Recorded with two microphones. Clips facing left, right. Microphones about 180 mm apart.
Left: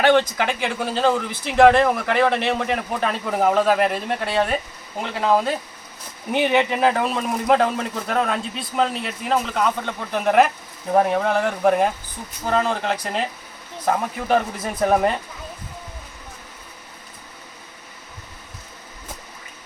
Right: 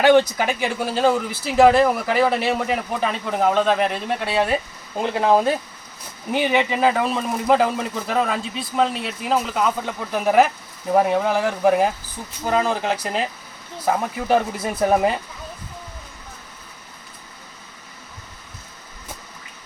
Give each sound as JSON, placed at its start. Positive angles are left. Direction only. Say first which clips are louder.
{"t": 0.0, "sound": "speech", "louder": "right 2 dB", "side_deg": -10}
{"t": 4.9, "sound": "speech", "louder": "right 2 dB", "side_deg": -25}
{"t": 6.3, "sound": "speech", "louder": "left 1 dB", "side_deg": 0}